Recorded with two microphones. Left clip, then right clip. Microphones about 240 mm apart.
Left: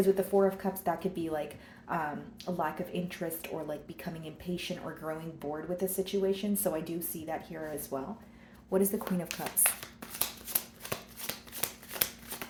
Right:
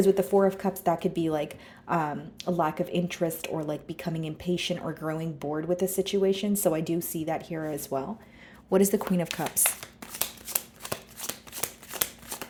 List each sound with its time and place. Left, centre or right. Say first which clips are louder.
0.2 s speech: right 4 dB; right
9.3 s shuffling cards: right 5 dB; right